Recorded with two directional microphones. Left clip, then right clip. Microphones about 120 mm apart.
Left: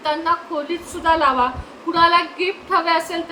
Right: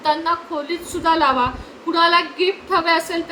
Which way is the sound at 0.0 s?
25° right (ahead or behind).